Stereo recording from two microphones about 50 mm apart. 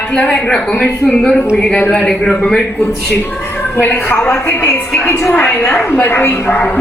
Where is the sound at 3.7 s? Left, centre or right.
Left.